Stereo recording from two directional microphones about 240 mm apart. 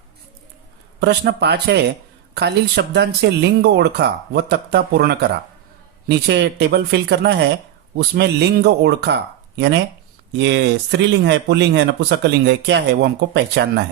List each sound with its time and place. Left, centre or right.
0.9 s speech: right